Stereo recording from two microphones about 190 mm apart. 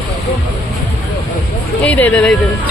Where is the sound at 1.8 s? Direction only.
10° left (ahead or behind).